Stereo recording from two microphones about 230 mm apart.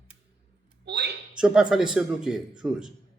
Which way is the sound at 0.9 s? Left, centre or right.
Right.